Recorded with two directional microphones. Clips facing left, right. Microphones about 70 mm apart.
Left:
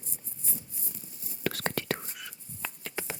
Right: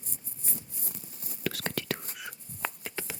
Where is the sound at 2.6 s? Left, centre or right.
Right.